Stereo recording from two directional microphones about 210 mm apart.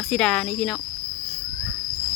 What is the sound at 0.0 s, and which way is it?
Speech, 5° left (ahead or behind).